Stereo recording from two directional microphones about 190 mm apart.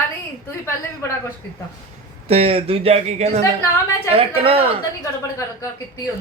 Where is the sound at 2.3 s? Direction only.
30° right (ahead or behind).